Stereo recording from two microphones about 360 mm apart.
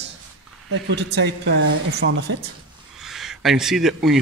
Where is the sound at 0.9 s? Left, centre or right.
Right.